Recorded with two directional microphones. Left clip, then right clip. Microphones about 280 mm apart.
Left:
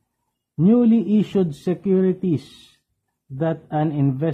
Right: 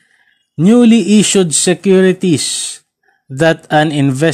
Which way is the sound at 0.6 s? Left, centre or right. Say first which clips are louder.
Right 8 dB; right.